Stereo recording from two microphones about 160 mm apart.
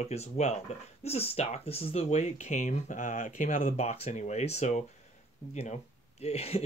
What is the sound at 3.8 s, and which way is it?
Speech, 45° left (ahead or behind).